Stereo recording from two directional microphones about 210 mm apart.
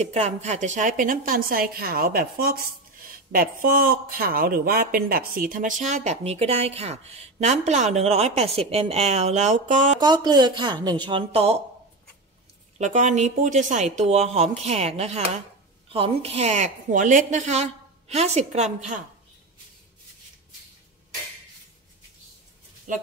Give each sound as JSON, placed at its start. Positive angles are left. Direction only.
{"t": 0.0, "sound": "speech", "side_deg": -30}
{"t": 9.9, "sound": "speech", "side_deg": -20}
{"t": 12.7, "sound": "speech", "side_deg": -35}